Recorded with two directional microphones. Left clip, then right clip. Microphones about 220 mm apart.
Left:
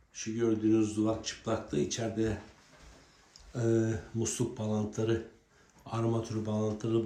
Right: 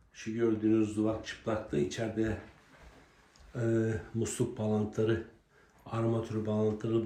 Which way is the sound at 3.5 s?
5° left (ahead or behind).